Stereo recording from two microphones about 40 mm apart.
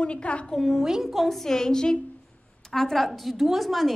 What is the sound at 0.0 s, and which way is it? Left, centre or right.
Speech, left.